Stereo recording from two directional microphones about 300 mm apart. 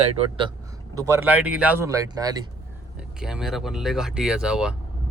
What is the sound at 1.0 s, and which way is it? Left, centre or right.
Speech, centre.